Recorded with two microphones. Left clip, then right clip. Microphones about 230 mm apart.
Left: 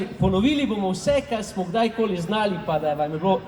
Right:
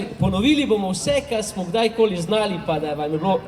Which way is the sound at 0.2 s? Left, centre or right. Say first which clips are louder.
Right 2 dB; right.